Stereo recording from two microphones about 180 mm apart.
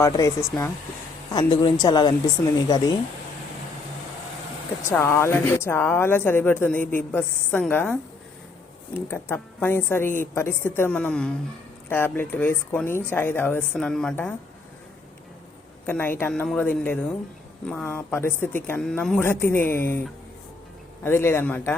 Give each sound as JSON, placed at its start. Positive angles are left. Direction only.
{"t": 0.0, "sound": "speech", "side_deg": 15}
{"t": 1.7, "sound": "speech", "side_deg": 20}
{"t": 4.9, "sound": "speech", "side_deg": 15}
{"t": 9.0, "sound": "speech", "side_deg": 10}
{"t": 15.9, "sound": "speech", "side_deg": 10}
{"t": 21.0, "sound": "speech", "side_deg": 15}